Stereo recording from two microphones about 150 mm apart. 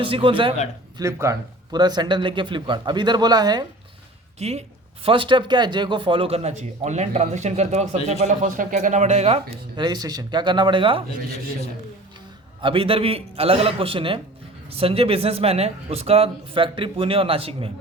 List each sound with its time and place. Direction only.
0.0 s speech: 35° right (ahead or behind)
0.9 s speech: 20° right (ahead or behind)
4.4 s speech: 45° right (ahead or behind)
5.0 s speech: 35° right (ahead or behind)
9.7 s speech: 30° right (ahead or behind)
12.6 s speech: 40° right (ahead or behind)